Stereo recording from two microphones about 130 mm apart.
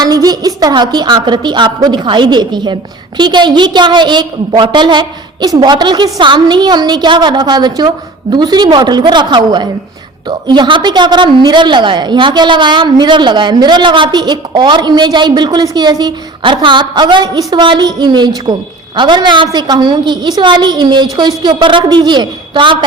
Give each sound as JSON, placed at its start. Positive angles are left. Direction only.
{"t": 0.0, "sound": "a woman's voice", "side_deg": -30}